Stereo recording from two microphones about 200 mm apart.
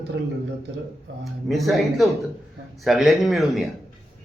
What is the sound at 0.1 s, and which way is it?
Speech, 60° right (ahead or behind).